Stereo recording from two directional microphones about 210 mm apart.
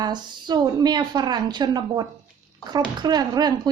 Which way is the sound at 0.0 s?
20° right (ahead or behind).